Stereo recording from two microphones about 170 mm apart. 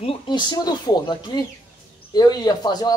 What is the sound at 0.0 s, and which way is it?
Speech, 30° left (ahead or behind).